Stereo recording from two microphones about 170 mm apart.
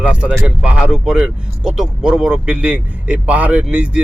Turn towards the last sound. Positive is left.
turn(degrees=-5)  # may be behind; listen again after turning